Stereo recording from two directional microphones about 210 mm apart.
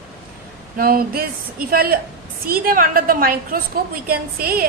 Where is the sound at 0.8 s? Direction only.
45° right (ahead or behind).